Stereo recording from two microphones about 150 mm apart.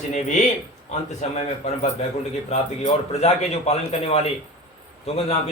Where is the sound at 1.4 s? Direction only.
45° left (ahead or behind).